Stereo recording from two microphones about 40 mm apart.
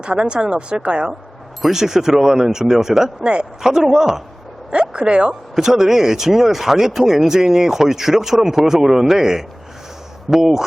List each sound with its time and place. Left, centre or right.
0.0 s speech: right
1.6 s speech: centre
4.7 s speech: right
5.3 s speech: centre